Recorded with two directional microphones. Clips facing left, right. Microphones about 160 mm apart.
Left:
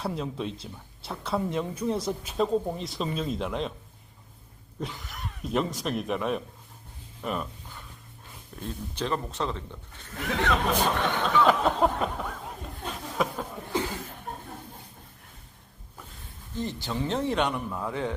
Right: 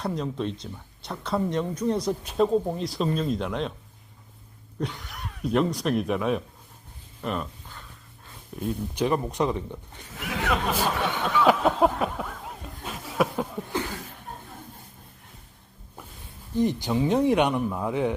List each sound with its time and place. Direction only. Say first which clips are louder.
0.0 s speech: right 3 dB; 5° left (ahead or behind)
4.8 s speech: right 3 dB; centre (ahead or behind)
7.2 s a sound: right 2 dB; 5° left (ahead or behind)
8.6 s speech: right 6 dB; 15° right (ahead or behind)
12.8 s a sound: right 3 dB; 10° right (ahead or behind)
16.6 s speech: right 8 dB; 15° right (ahead or behind)